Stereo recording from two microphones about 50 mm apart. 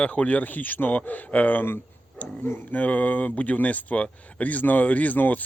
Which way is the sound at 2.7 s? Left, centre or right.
Left.